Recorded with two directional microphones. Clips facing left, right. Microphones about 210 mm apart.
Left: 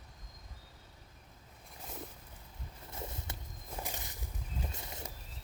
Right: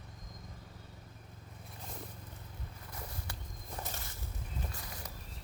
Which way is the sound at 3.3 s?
25° left (ahead or behind).